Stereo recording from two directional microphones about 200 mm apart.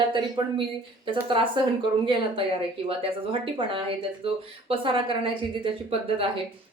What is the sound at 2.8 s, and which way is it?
Speech, 25° right (ahead or behind).